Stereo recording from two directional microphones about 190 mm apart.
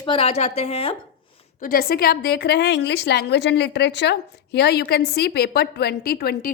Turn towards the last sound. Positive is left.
turn(degrees=55)  # may be behind; listen again after turning